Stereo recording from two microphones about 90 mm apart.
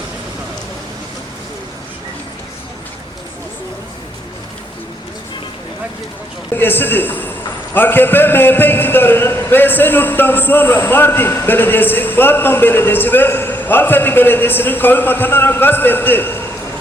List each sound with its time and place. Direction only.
6.5 s a man's voice: 25° left (ahead or behind)